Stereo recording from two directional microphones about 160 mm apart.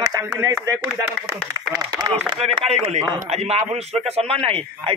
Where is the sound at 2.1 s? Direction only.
35° right (ahead or behind).